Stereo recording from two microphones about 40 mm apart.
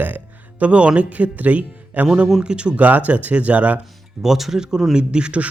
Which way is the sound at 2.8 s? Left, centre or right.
Right.